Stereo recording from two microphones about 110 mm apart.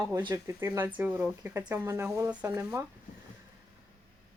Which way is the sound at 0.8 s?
15° right (ahead or behind).